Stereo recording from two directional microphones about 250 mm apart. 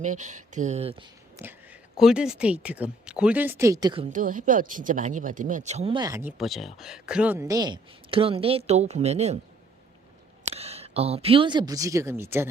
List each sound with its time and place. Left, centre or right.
0.0 s speech: right
1.4 s speech: centre
6.3 s speech: centre; by 9.4 s right
10.4 s a woman's voice: right; by 12.5 s centre